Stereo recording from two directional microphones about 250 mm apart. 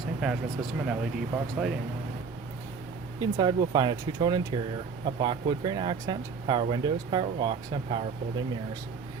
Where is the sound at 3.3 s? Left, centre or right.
Centre.